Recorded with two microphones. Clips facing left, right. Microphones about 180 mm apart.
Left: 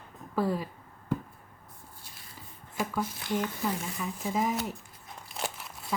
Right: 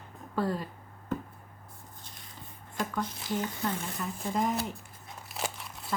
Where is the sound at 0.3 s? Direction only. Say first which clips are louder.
Left 2 dB; 5° left (ahead or behind).